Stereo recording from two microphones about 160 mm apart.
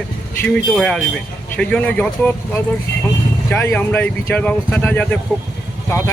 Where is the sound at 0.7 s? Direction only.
5° left (ahead or behind).